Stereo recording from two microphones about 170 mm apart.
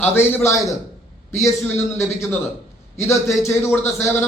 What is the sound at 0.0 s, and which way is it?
A man's voice, 15° left (ahead or behind).